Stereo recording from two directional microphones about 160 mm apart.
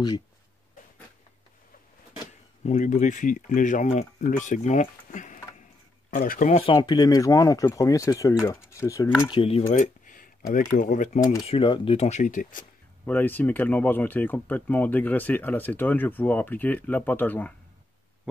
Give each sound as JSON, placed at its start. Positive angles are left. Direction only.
{"t": 2.6, "sound": "speech", "side_deg": 50}
{"t": 6.5, "sound": "speech", "side_deg": 35}
{"t": 9.3, "sound": "speech", "side_deg": 35}
{"t": 11.4, "sound": "speech", "side_deg": 35}
{"t": 13.0, "sound": "speech", "side_deg": 10}